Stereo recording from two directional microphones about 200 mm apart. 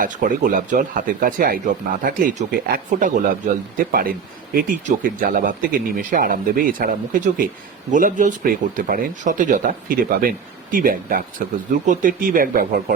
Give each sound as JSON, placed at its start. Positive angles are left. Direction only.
{"t": 0.0, "sound": "speech", "side_deg": -40}